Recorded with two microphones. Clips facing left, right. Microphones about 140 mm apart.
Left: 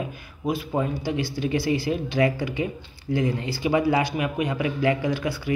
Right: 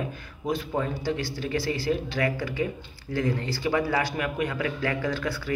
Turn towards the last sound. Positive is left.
turn(degrees=15)  # may be behind; listen again after turning